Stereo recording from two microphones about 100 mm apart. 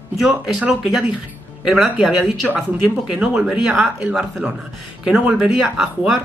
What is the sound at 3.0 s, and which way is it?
Speech, 10° right (ahead or behind).